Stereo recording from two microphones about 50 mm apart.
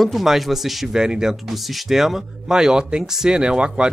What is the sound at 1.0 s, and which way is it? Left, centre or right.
Speech, centre.